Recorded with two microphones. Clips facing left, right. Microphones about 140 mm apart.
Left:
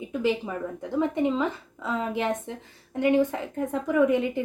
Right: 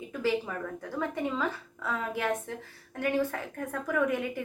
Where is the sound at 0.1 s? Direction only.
20° left (ahead or behind).